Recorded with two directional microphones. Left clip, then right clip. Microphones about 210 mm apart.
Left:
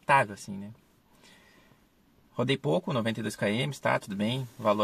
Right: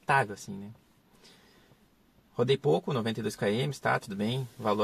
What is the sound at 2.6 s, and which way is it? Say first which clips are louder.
Speech: right 1 dB; 15° left (ahead or behind).